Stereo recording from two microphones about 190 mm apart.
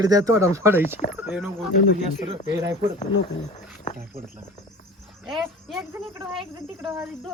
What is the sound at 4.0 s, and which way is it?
Speech, 50° right (ahead or behind).